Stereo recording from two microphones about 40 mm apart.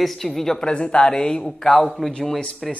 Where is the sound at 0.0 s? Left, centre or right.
Centre.